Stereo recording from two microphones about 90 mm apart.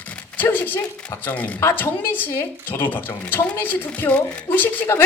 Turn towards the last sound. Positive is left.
turn(degrees=20)  # may be behind; listen again after turning